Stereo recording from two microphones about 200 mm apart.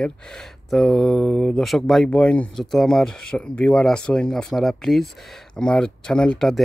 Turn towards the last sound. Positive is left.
turn(degrees=0)  # may be behind; listen again after turning